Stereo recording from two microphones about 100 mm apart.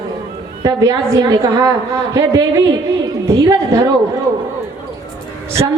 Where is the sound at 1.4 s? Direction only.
30° right (ahead or behind).